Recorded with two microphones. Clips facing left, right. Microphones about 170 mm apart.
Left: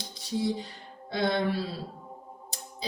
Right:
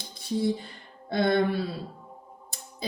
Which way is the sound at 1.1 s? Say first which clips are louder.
Right 4 dB; 55° right (ahead or behind).